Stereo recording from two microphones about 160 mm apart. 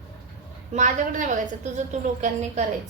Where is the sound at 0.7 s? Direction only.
50° right (ahead or behind).